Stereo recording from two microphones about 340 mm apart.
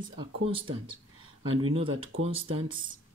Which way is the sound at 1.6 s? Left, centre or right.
Centre.